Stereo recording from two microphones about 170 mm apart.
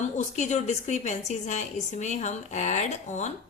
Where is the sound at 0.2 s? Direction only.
45° left (ahead or behind).